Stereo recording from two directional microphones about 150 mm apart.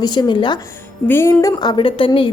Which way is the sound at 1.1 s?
15° left (ahead or behind).